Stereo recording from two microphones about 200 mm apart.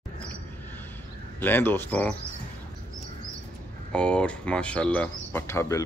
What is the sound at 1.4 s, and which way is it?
Speech, 10° left (ahead or behind).